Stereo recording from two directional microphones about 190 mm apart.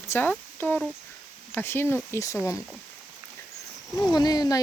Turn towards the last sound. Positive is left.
turn(degrees=20)  # may be behind; listen again after turning